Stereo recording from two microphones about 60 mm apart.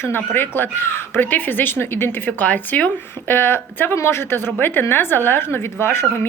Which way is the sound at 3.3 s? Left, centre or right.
Left.